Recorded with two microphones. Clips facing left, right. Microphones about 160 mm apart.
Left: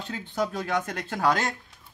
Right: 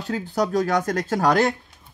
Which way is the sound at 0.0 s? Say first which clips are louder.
Right 6 dB; 40° right (ahead or behind).